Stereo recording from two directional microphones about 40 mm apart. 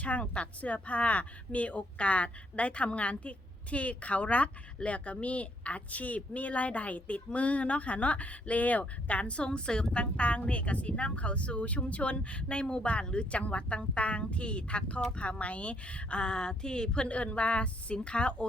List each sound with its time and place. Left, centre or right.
0.0 s speech: left
17.1 s speech: left